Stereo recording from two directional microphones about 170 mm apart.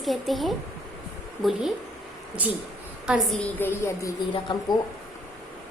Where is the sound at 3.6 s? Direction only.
15° left (ahead or behind).